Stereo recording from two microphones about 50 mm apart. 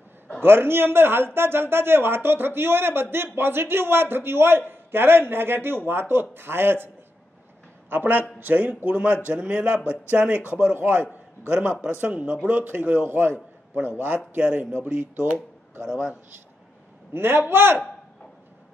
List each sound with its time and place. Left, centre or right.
0.4 s a man's voice: right
7.9 s a man's voice: right
15.1 s a sound: right
15.9 s a man's voice: centre
17.1 s a man's voice: right